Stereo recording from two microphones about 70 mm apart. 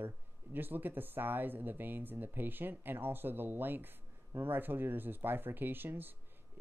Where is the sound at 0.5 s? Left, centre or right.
Right.